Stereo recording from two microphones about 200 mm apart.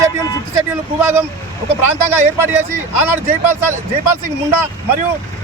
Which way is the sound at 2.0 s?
10° right (ahead or behind).